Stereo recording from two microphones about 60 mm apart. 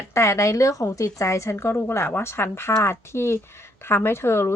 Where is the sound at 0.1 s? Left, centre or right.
Left.